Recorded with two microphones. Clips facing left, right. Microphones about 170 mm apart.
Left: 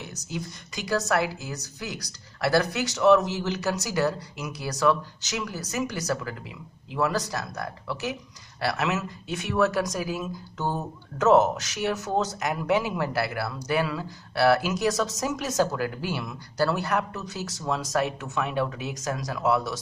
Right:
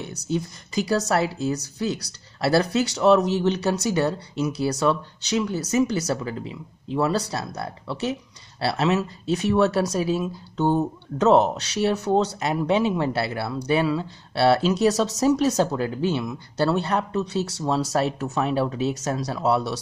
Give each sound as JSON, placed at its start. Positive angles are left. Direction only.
{"t": 0.8, "sound": "speech", "side_deg": -30}
{"t": 6.9, "sound": "speech", "side_deg": -30}